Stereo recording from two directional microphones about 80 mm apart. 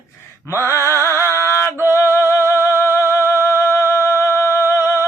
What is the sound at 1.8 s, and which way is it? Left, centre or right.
Music, left.